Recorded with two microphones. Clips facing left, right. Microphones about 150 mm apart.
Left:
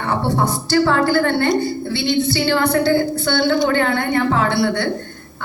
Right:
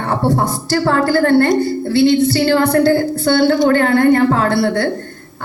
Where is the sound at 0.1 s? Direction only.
45° right (ahead or behind).